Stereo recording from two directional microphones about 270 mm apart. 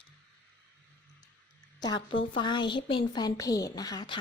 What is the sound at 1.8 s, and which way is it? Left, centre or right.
A woman's voice, centre.